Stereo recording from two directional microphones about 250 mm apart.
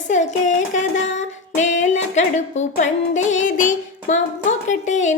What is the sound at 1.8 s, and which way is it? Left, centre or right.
Music, left.